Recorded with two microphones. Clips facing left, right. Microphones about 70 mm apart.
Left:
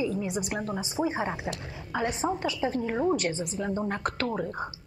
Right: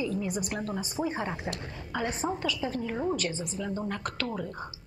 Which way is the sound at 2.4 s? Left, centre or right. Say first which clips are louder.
Left 3 dB; left.